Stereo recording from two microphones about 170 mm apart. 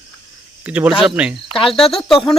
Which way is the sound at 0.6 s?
10° right (ahead or behind).